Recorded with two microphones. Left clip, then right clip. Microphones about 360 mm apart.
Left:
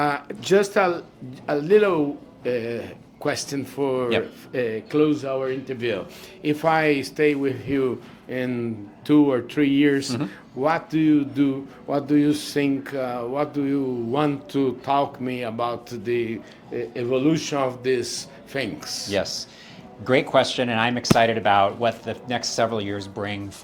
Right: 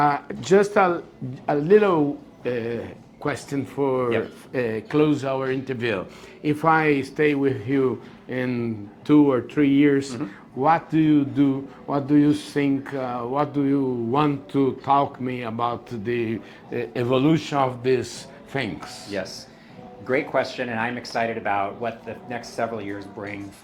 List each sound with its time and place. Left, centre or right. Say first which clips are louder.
0.0 s a man's voice: right 3 dB; centre
19.1 s a man's voice: left 5 dB; left